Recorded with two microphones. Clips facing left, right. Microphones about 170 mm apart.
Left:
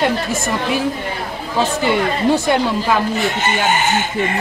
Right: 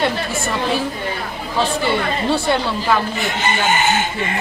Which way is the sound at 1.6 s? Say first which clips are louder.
Left 2 dB; 20° left (ahead or behind).